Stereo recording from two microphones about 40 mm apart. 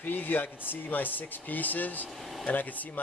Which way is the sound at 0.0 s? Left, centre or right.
Left.